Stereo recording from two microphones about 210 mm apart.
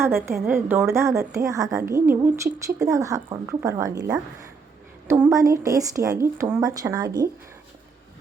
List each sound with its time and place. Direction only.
0.0 s a woman's voice: 10° right (ahead or behind)
5.0 s a woman's voice: 10° right (ahead or behind)